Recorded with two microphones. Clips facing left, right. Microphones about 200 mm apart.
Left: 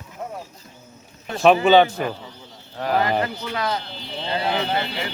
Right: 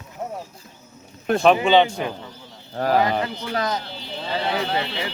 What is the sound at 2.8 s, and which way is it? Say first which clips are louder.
Speech: right 3 dB; 45° right (ahead or behind).